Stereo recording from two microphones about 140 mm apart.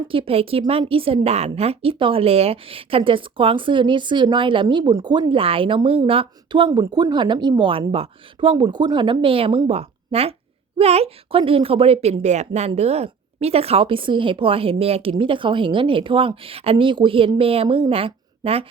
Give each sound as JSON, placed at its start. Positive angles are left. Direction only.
{"t": 0.1, "sound": "a woman's voice", "side_deg": -40}
{"t": 6.7, "sound": "a woman's voice", "side_deg": -30}